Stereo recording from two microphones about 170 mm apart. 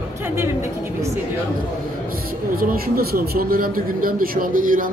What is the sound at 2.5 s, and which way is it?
Speech, 60° right (ahead or behind).